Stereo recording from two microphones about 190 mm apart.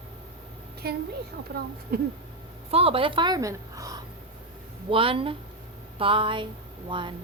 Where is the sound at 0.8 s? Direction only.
55° right (ahead or behind).